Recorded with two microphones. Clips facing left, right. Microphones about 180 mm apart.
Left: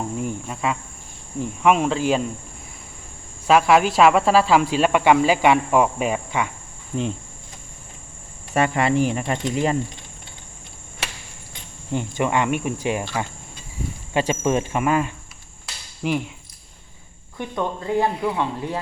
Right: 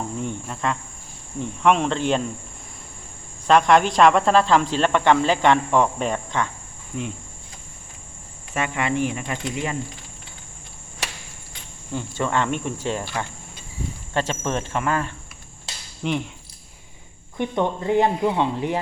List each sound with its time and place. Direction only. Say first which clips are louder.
0.2 s speech: left 1 dB; 5° left (ahead or behind)
1.4 s cricket: left 1 dB; 5° left (ahead or behind)
3.4 s speech: even; 5° left (ahead or behind)
6.9 s speech: left 5 dB; 35° left (ahead or behind)
8.5 s speech: left 5 dB; 35° left (ahead or behind)
11.9 s speech: left 2 dB; 15° left (ahead or behind)
14.1 s speech: left 4 dB; 10° left (ahead or behind)
16.0 s cricket: left 2 dB; 5° left (ahead or behind)
17.3 s speech: right 3 dB; 20° right (ahead or behind)